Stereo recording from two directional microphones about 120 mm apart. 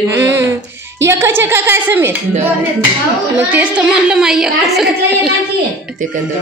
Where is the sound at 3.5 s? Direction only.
10° right (ahead or behind).